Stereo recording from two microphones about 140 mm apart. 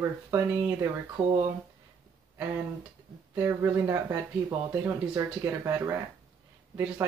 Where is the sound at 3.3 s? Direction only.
15° right (ahead or behind).